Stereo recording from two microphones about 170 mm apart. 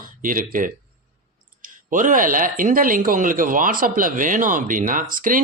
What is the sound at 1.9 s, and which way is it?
Speech, 50° right (ahead or behind).